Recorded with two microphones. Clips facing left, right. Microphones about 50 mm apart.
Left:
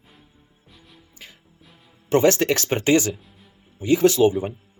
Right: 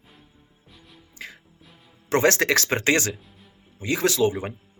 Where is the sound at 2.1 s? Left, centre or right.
Right.